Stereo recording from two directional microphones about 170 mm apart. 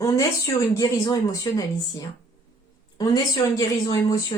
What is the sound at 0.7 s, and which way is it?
Speech, 20° left (ahead or behind).